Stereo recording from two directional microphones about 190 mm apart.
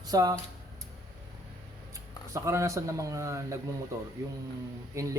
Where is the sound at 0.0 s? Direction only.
20° right (ahead or behind).